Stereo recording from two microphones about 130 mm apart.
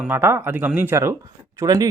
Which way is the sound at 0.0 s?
15° right (ahead or behind).